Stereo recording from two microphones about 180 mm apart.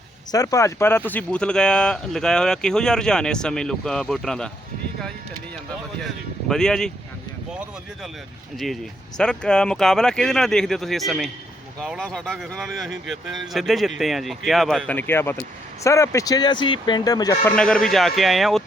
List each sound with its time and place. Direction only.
0.3 s speech: 20° left (ahead or behind); by 4.5 s 5° left (ahead or behind)
6.5 s speech: 5° left (ahead or behind)
8.5 s speech: centre (ahead or behind); by 17.3 s 20° left (ahead or behind)
17.4 s speech: 5° left (ahead or behind)